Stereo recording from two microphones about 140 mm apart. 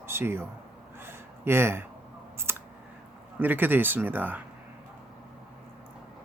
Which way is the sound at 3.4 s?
15° right (ahead or behind).